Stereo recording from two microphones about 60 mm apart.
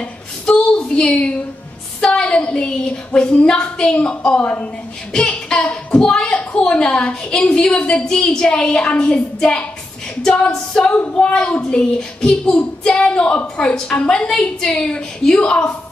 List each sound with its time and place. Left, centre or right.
0.0 s a sound: centre
2.0 s a woman's voice: centre
10.9 s a woman's voice: left